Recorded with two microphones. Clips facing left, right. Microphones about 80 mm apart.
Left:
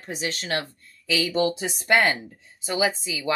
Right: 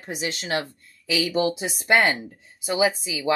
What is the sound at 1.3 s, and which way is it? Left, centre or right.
Speech, centre.